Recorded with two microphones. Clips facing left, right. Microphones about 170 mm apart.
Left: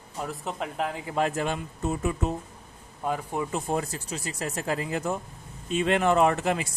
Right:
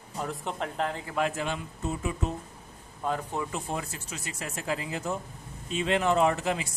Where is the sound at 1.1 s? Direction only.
40° left (ahead or behind).